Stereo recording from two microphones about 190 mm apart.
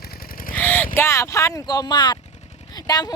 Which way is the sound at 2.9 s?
20° left (ahead or behind).